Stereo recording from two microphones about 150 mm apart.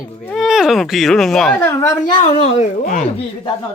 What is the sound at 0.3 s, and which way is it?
Speech, centre (ahead or behind).